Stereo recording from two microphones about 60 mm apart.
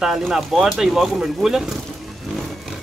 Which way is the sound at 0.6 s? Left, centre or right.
Centre.